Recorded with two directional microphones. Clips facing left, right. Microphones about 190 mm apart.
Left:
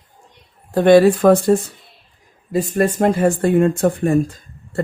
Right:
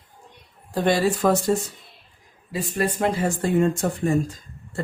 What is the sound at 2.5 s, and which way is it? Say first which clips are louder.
Speech: left 8 dB; 45° left (ahead or behind).